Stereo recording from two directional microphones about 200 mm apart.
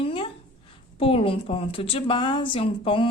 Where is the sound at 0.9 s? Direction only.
25° left (ahead or behind).